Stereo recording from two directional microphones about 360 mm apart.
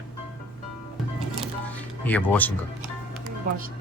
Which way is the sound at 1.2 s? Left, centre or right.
Centre.